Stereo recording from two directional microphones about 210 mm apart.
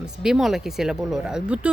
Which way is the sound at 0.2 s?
Centre (ahead or behind).